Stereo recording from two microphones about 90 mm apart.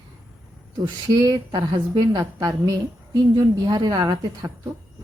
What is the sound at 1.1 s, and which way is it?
A woman's voice, 45° right (ahead or behind).